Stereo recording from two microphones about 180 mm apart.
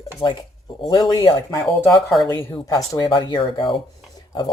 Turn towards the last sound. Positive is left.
turn(degrees=25)  # may be behind; listen again after turning